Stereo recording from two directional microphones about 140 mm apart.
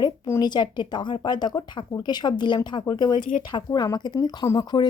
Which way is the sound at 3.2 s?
70° left (ahead or behind).